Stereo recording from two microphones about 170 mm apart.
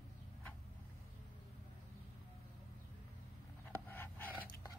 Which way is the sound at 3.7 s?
10° left (ahead or behind).